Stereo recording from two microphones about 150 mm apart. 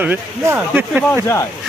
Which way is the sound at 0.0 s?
10° right (ahead or behind).